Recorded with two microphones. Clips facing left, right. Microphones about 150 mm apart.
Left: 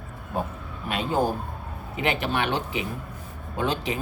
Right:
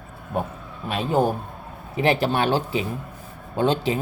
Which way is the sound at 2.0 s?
35° right (ahead or behind).